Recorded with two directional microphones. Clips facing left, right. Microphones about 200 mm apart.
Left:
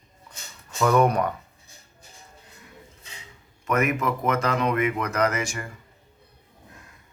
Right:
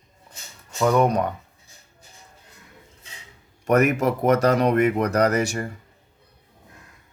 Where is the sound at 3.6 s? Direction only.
40° right (ahead or behind).